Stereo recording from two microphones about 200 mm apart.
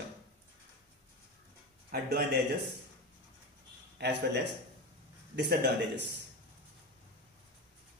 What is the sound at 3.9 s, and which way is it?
Speech, 55° right (ahead or behind).